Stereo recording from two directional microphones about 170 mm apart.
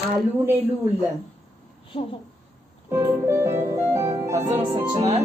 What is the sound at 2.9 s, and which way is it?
Music, 15° right (ahead or behind).